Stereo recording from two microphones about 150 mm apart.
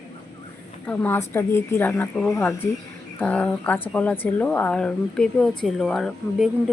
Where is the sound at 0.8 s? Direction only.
10° left (ahead or behind).